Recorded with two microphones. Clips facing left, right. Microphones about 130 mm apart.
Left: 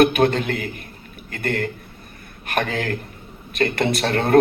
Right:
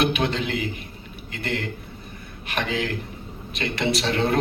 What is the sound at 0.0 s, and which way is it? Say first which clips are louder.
A man's voice: left 7 dB; 50° left (ahead or behind).